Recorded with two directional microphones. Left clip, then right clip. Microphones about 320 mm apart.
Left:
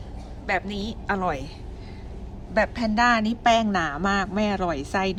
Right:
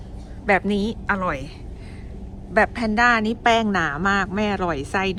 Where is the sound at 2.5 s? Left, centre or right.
Centre.